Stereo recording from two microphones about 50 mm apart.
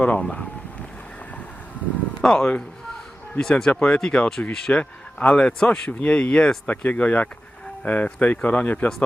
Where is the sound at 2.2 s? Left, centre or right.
Centre.